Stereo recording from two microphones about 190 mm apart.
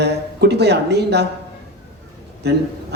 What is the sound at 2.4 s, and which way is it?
Speech, 60° right (ahead or behind).